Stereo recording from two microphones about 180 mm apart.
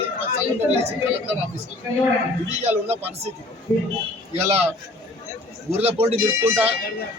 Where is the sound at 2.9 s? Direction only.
35° right (ahead or behind).